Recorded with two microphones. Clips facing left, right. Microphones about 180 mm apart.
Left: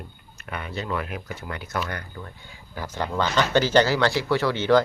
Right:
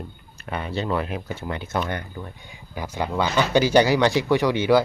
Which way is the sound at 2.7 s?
15° right (ahead or behind).